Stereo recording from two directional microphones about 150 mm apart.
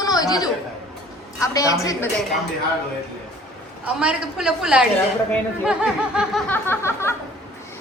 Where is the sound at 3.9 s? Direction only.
5° right (ahead or behind).